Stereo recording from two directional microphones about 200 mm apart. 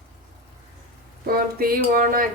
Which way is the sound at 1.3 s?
50° right (ahead or behind).